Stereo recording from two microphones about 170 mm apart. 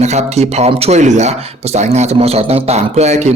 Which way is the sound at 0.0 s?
40° right (ahead or behind).